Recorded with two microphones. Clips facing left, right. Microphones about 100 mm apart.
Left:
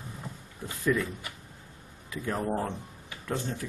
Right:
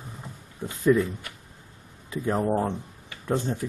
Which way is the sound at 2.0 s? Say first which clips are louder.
Right 6 dB; 25° right (ahead or behind).